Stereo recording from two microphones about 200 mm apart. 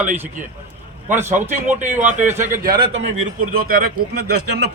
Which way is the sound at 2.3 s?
10° right (ahead or behind).